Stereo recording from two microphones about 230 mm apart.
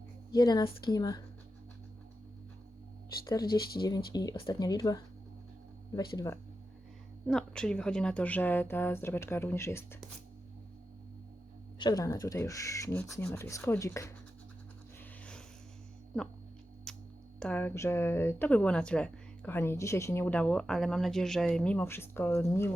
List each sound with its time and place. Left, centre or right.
0.3 s speech: centre
3.8 s speech: centre
6.1 s speech: centre
11.8 s speech: centre
16.1 s speech: centre
16.9 s a sound: centre
17.4 s speech: centre